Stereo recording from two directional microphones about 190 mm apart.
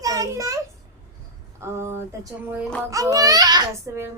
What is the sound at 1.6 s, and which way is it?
A child's voice, 15° right (ahead or behind).